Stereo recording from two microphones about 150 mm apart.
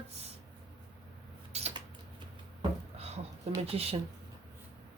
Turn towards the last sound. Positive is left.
turn(degrees=-40)  # may be behind; listen again after turning